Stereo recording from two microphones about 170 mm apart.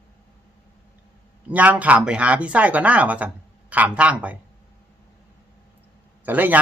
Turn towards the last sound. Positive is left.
turn(degrees=-10)  # may be behind; listen again after turning